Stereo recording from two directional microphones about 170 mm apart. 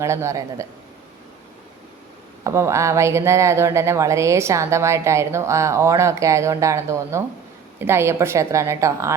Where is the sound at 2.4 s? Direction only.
15° right (ahead or behind).